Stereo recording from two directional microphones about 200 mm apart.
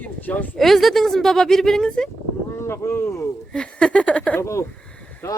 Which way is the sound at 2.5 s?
10° left (ahead or behind).